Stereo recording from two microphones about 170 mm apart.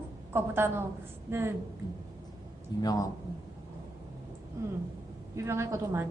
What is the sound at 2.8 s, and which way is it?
Speech, 20° left (ahead or behind).